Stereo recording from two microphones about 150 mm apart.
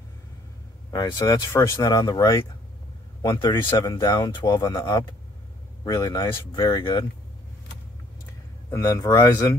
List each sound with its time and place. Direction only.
0.9 s speech: 25° left (ahead or behind)
8.6 s speech: 20° left (ahead or behind)